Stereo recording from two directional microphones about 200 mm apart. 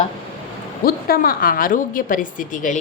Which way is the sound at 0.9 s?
50° left (ahead or behind).